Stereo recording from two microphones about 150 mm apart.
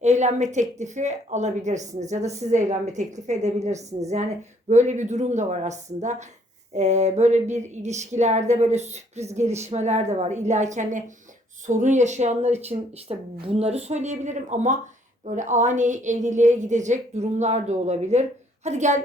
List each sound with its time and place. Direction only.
0.0 s speech: 50° right (ahead or behind)